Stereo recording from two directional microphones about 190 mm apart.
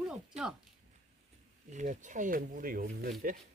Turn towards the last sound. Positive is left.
turn(degrees=-50)  # may be behind; listen again after turning